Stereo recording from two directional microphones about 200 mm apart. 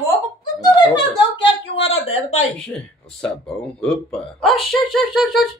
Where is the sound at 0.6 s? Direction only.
20° left (ahead or behind).